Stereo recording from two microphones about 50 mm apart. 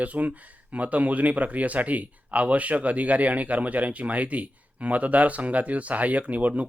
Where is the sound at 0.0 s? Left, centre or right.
Right.